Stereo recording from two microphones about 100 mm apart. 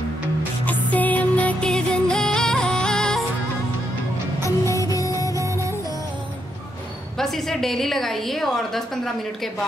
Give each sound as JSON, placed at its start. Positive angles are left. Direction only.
{"t": 0.7, "sound": "music", "side_deg": 15}
{"t": 4.6, "sound": "music", "side_deg": 35}
{"t": 5.3, "sound": "music", "side_deg": -30}
{"t": 7.2, "sound": "a woman's voice", "side_deg": 5}